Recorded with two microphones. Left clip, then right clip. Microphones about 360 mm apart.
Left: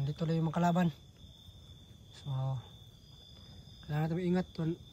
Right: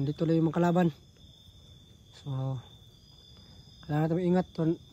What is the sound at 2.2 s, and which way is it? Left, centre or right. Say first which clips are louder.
Speech: right 3 dB; centre.